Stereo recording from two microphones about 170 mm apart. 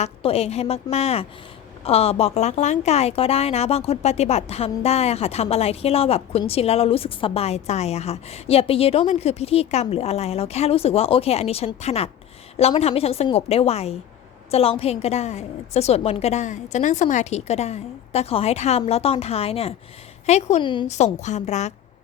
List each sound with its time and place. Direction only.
0.0 s a woman's voice: 35° left (ahead or behind)
20.6 s speech: 30° left (ahead or behind)
20.8 s a woman's voice: 40° left (ahead or behind)